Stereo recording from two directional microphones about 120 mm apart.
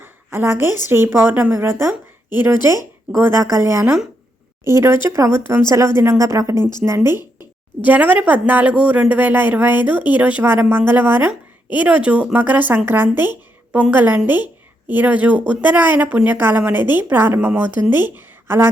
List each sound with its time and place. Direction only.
0.0 s a sound: 20° right (ahead or behind)
0.9 s speech: 20° right (ahead or behind)
6.6 s a woman's voice: 35° left (ahead or behind)
6.8 s speech: 20° right (ahead or behind)